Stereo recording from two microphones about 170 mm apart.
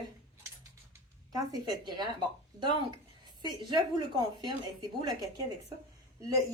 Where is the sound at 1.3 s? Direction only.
20° right (ahead or behind).